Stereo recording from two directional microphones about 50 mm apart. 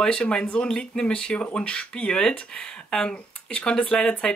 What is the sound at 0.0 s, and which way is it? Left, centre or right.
Speech, centre.